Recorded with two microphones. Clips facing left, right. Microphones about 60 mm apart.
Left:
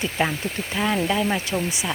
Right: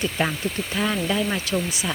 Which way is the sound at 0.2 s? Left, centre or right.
Centre.